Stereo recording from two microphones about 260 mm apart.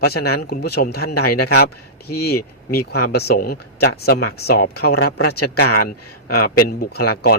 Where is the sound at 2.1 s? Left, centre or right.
Left.